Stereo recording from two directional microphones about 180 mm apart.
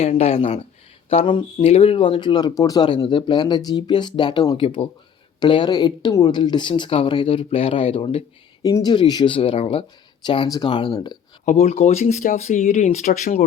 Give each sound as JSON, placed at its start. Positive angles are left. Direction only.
{"t": 0.0, "sound": "speech", "side_deg": 35}
{"t": 8.6, "sound": "speech", "side_deg": 20}
{"t": 11.4, "sound": "speech", "side_deg": 40}